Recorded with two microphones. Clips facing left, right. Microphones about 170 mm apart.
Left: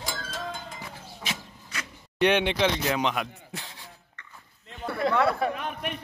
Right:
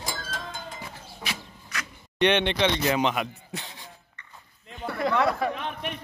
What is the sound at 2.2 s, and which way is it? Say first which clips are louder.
Speech: even; 5° left (ahead or behind).